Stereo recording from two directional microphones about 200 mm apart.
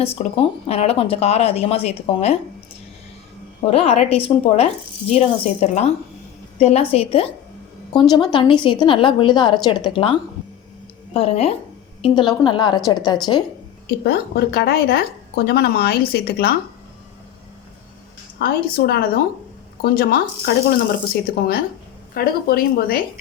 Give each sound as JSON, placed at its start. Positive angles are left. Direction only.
{"t": 0.0, "sound": "speech", "side_deg": 30}
{"t": 3.7, "sound": "speech", "side_deg": 30}
{"t": 13.8, "sound": "a woman's voice", "side_deg": 50}
{"t": 18.3, "sound": "a woman's voice", "side_deg": 50}